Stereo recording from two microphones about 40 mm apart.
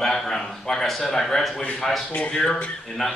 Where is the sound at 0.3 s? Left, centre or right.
Centre.